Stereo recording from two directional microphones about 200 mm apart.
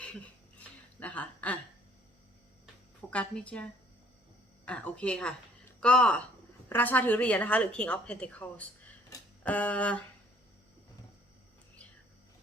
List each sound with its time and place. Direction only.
0.9 s chuckle: 5° left (ahead or behind)
3.1 s a woman's voice: 5° left (ahead or behind)